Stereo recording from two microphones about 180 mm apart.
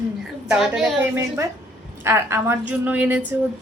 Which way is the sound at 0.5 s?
Centre (ahead or behind).